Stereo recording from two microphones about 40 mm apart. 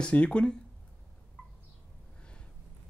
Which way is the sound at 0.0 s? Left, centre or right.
Left.